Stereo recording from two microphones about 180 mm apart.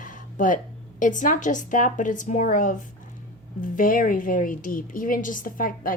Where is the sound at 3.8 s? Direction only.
50° left (ahead or behind).